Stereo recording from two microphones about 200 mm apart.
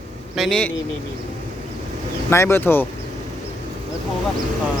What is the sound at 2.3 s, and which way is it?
Speech, 10° left (ahead or behind).